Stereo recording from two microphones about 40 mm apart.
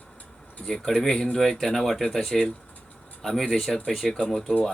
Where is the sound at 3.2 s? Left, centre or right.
Centre.